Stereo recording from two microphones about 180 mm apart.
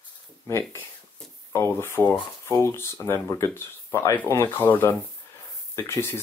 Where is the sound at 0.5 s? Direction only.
15° left (ahead or behind).